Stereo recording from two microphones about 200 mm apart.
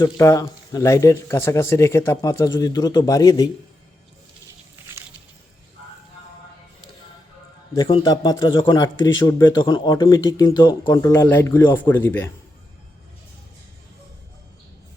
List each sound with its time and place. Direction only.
0.0 s speech: 15° left (ahead or behind)
7.8 s a man's voice: 20° left (ahead or behind)